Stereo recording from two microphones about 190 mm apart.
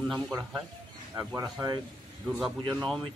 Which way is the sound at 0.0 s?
Centre (ahead or behind).